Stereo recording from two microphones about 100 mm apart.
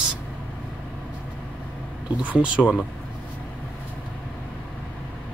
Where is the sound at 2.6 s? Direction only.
15° left (ahead or behind).